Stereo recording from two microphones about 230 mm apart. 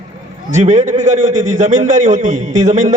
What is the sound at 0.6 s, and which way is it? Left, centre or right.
A man's voice, right.